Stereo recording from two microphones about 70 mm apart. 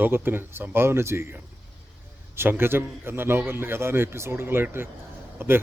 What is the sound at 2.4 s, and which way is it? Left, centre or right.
Speech, right.